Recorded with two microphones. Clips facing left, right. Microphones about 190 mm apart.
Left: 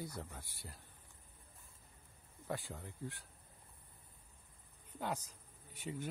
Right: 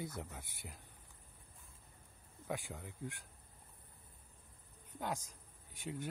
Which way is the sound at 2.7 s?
5° right (ahead or behind).